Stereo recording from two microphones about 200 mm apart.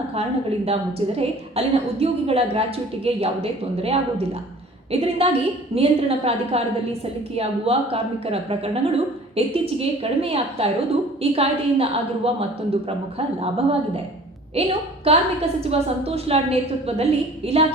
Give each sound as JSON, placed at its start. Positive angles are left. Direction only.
{"t": 0.1, "sound": "a woman's voice", "side_deg": -30}